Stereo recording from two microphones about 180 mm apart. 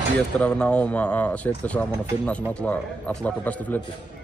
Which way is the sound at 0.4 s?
5° left (ahead or behind).